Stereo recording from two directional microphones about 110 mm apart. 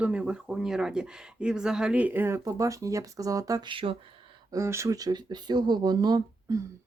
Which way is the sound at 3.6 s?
50° right (ahead or behind).